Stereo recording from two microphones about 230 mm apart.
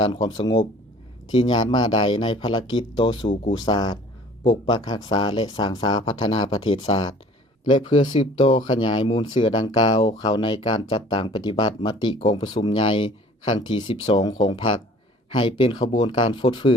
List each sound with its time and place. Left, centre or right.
0.0 s speech: centre